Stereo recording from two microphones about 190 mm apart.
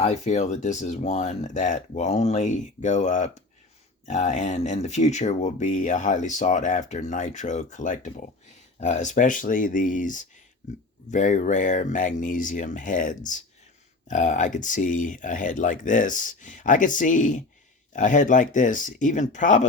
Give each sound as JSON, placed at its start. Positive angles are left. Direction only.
{"t": 0.0, "sound": "speech", "side_deg": 35}